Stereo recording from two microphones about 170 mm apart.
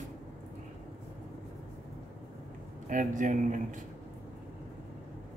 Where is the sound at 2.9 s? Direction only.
50° right (ahead or behind).